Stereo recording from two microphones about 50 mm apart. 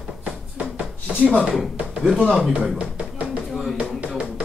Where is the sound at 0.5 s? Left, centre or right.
Right.